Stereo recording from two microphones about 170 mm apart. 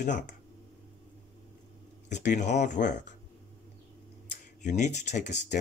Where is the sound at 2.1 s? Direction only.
45° left (ahead or behind).